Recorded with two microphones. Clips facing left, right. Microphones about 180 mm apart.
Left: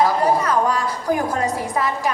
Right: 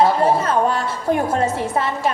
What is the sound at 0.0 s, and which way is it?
Speech, 25° right (ahead or behind).